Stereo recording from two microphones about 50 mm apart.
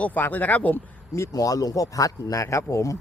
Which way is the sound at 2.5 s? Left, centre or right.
Left.